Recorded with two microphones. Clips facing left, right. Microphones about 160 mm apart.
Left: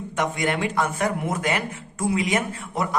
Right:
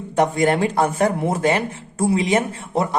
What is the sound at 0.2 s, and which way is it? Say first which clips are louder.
A man's voice: right 7 dB; 35° right (ahead or behind).